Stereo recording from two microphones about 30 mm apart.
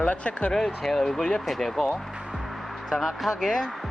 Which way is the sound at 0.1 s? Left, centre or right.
Left.